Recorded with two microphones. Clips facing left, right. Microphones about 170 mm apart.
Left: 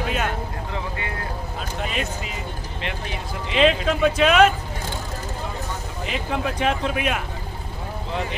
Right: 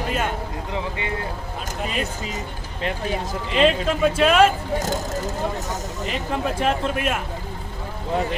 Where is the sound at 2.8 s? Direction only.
40° right (ahead or behind).